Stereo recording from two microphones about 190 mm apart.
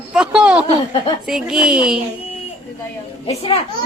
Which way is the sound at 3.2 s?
30° left (ahead or behind).